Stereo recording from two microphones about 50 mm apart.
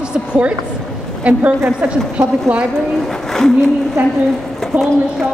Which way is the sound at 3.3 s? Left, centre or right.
Centre.